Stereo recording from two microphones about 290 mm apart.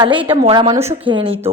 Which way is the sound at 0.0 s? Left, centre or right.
Centre.